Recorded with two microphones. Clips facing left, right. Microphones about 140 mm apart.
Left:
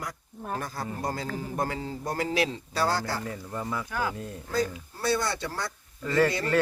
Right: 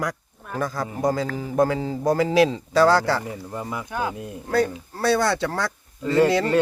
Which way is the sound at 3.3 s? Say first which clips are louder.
Right 2 dB; 15° right (ahead or behind).